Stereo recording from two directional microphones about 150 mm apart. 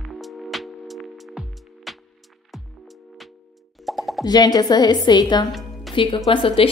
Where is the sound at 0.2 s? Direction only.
Centre (ahead or behind).